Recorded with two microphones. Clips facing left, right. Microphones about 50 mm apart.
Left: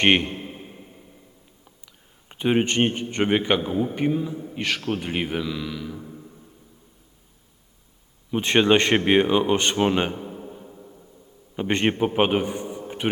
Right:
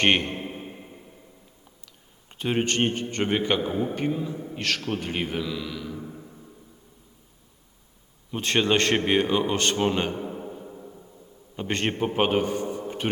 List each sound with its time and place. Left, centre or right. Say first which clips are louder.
0.0 s a man's voice: left 3 dB; centre
0.3 s a sound: right 1 dB; right
2.3 s a man's voice: left 4 dB; centre
3.6 s a man's voice: left 2 dB; centre
6.0 s a sound: right 1 dB; centre
8.3 s a man's voice: left 5 dB; centre
10.2 s a sound: right 2 dB; centre
10.7 s music: right 3 dB; centre
11.5 s a man's voice: left 5 dB; centre